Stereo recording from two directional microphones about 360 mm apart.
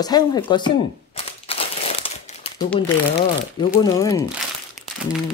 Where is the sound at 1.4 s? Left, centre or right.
Centre.